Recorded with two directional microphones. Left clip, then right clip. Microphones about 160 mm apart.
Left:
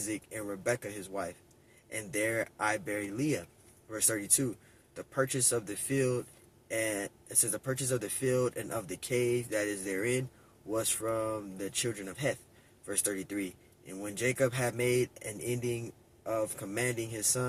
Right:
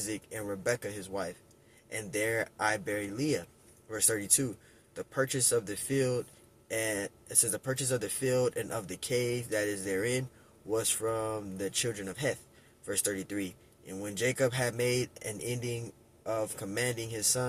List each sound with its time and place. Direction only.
0.0 s speech: 25° right (ahead or behind)